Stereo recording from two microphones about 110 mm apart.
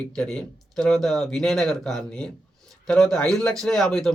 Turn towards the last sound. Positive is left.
turn(degrees=5)  # may be behind; listen again after turning